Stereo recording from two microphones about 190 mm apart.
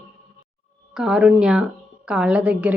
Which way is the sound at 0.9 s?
5° right (ahead or behind).